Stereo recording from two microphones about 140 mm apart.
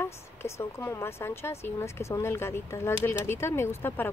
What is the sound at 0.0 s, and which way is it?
Speech, 20° left (ahead or behind).